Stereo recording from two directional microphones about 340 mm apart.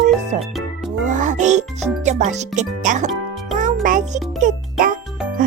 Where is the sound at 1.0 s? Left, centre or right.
Right.